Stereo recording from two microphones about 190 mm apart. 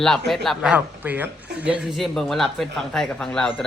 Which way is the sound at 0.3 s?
Centre (ahead or behind).